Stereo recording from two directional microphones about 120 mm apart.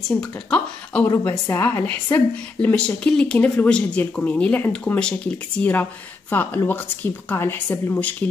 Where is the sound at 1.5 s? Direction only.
20° left (ahead or behind).